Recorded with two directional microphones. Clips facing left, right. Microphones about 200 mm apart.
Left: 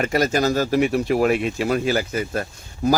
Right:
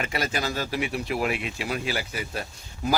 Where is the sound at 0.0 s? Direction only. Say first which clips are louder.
Left 9 dB; 45° left (ahead or behind).